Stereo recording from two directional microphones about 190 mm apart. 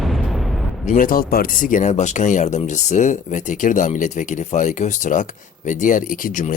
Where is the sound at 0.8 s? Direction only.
45° left (ahead or behind).